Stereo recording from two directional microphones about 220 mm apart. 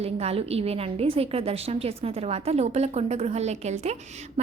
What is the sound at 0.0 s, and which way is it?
A woman's voice, 25° right (ahead or behind).